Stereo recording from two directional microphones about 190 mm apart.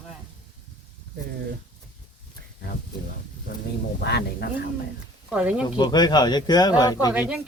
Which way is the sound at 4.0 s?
60° left (ahead or behind).